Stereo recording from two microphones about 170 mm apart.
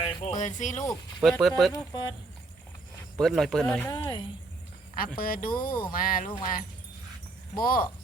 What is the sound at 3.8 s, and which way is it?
Speech, 15° left (ahead or behind).